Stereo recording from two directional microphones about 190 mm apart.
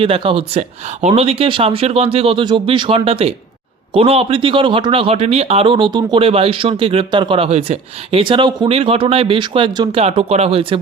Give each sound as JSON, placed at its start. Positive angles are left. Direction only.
{"t": 0.0, "sound": "speech", "side_deg": -30}